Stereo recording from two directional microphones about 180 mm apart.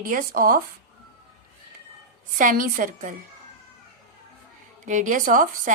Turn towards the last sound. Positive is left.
turn(degrees=-45)  # may be behind; listen again after turning